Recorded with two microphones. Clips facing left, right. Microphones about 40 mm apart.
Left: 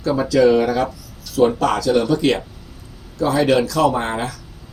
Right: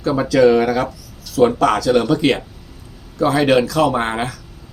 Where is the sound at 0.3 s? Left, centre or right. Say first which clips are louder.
Right 2 dB; right.